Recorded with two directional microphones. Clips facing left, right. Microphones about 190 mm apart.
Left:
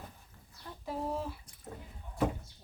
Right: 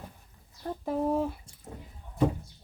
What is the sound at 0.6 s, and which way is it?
Speech, 50° right (ahead or behind).